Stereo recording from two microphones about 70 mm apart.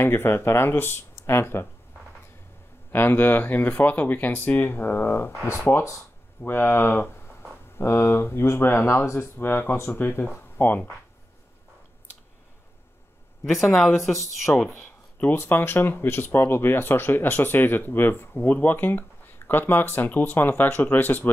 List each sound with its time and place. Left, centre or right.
0.0 s speech: left
2.9 s speech: left
14.1 s speech: centre
14.8 s a sound: centre
15.3 s speech: left